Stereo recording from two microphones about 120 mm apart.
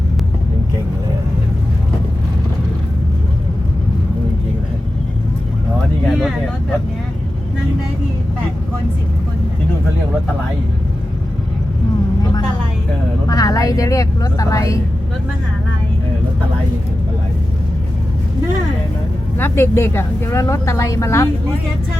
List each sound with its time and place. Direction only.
13.2 s vehicle: 30° left (ahead or behind)
19.4 s a woman's voice: 20° left (ahead or behind)